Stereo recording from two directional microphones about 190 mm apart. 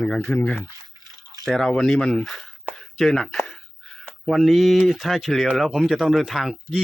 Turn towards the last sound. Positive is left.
turn(degrees=0)  # may be behind; listen again after turning